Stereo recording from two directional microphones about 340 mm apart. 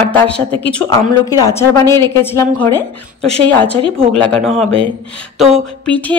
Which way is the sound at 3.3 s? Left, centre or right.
Centre.